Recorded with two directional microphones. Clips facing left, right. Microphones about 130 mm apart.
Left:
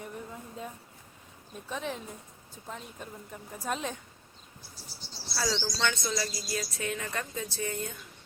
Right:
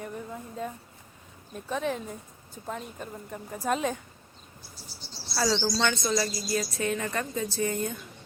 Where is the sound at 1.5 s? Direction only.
Centre (ahead or behind).